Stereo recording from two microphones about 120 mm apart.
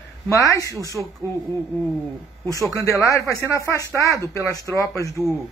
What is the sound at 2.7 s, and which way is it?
Speech, 25° left (ahead or behind).